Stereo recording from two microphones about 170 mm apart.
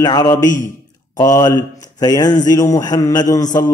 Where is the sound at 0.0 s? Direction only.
20° left (ahead or behind).